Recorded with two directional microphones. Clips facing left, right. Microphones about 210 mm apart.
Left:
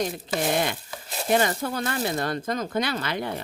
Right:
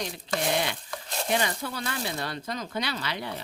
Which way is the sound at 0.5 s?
50° left (ahead or behind).